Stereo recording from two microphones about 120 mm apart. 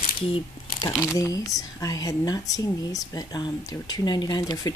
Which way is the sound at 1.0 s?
30° left (ahead or behind).